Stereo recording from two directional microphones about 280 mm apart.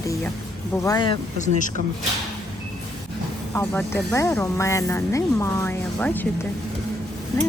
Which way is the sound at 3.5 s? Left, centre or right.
Centre.